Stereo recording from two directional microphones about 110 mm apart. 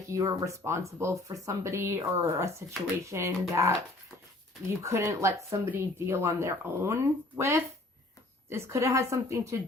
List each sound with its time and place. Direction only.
0.1 s speech: 30° right (ahead or behind)
4.8 s speech: 25° right (ahead or behind)